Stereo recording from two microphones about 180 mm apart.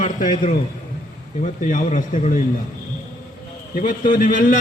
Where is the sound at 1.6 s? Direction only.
45° left (ahead or behind).